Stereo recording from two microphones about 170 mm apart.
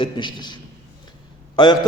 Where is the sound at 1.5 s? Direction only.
25° left (ahead or behind).